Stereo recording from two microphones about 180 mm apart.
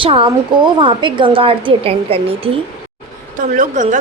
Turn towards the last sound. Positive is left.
turn(degrees=-45)  # may be behind; listen again after turning